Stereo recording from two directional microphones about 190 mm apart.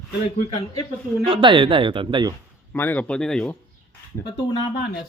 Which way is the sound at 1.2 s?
25° right (ahead or behind).